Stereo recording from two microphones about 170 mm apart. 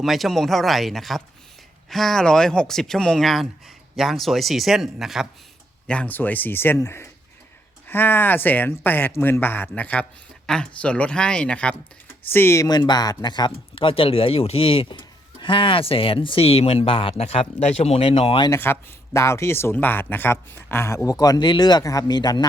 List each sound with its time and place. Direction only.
0.0 s speech: centre (ahead or behind); by 18.5 s 30° left (ahead or behind)
18.5 s speech: 15° left (ahead or behind)